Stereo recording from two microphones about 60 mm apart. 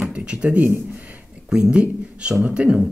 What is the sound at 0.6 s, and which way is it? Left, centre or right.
Speech, right.